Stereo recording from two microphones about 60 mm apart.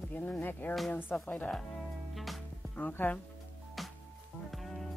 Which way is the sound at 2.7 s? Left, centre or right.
Left.